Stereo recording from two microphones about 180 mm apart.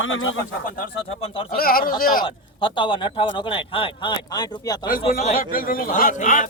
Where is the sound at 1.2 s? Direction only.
30° left (ahead or behind).